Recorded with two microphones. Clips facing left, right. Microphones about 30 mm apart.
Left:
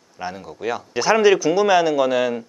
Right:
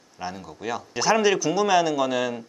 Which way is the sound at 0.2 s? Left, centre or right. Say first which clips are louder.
Left 5 dB; centre.